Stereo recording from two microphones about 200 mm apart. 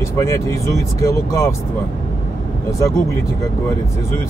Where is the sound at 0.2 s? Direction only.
15° left (ahead or behind).